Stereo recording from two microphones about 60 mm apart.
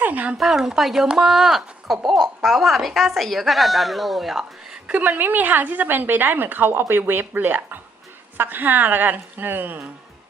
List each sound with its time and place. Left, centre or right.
0.0 s a sound: right
0.3 s a woman's voice: centre
5.0 s a woman's voice: right